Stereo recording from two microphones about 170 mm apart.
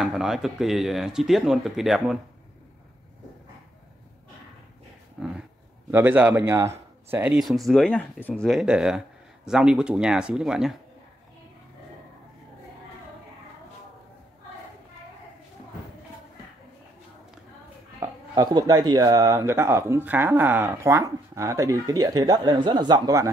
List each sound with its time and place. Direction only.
0.0 s speech: 5° right (ahead or behind)
5.2 s speech: 5° right (ahead or behind)
7.3 s speech: centre (ahead or behind)
8.5 s speech: 5° right (ahead or behind)
18.3 s speech: 20° right (ahead or behind)